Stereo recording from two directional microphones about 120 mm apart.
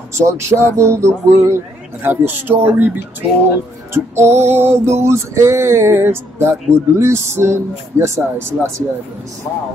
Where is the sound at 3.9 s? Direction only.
20° right (ahead or behind).